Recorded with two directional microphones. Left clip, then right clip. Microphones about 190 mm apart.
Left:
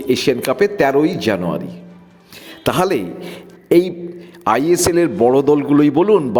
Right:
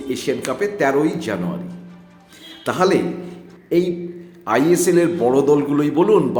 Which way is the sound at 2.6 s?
45° left (ahead or behind).